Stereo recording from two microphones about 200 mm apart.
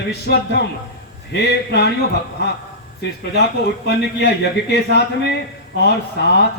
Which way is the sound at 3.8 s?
60° left (ahead or behind).